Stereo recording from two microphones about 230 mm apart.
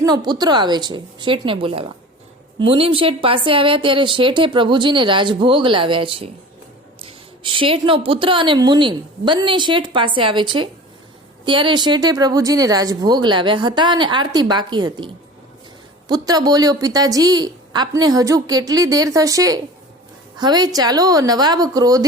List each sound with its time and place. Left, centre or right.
0.0 s a woman's voice: centre